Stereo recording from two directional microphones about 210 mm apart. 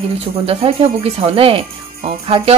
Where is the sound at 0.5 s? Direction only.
25° right (ahead or behind).